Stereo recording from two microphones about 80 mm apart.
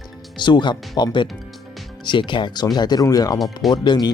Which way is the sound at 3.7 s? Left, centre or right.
Left.